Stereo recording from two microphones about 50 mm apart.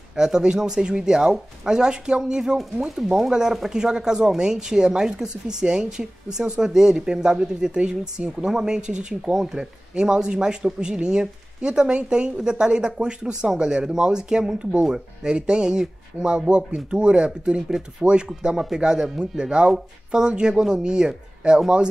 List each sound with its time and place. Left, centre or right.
0.1 s speech: centre